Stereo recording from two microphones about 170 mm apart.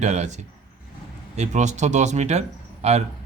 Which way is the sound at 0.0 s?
40° right (ahead or behind).